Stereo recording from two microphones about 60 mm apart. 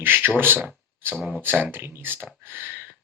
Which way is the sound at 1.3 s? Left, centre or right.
Right.